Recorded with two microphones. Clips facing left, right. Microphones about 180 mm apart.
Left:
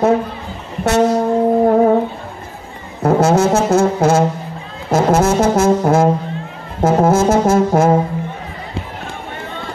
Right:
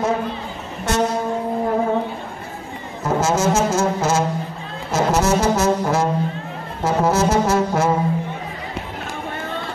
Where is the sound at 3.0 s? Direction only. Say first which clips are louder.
Left 7 dB; 60° left (ahead or behind).